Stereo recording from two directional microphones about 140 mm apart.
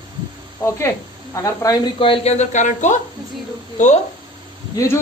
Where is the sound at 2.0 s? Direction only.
40° left (ahead or behind); by 4.0 s 60° left (ahead or behind).